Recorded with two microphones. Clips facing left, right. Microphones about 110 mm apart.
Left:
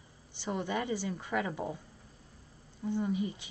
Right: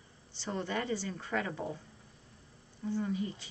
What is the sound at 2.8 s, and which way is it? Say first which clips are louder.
Speech: left 2 dB; 20° left (ahead or behind).